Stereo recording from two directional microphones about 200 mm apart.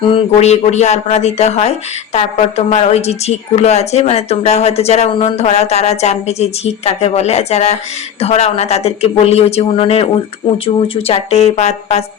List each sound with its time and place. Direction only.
0.0 s speech: 25° left (ahead or behind)